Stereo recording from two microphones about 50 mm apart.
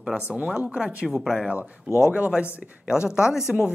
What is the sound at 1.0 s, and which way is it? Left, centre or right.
Speech, centre.